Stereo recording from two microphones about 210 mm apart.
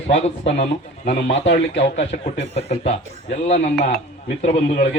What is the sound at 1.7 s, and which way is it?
A man's voice, 30° left (ahead or behind).